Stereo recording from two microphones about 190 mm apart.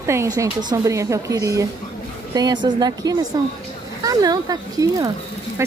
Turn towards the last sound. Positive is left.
turn(degrees=-15)  # may be behind; listen again after turning